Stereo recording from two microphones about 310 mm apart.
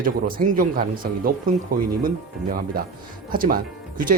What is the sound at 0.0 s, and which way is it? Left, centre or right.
Speech, right.